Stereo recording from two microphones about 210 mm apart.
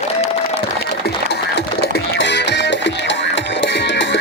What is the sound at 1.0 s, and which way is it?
Music, 50° left (ahead or behind).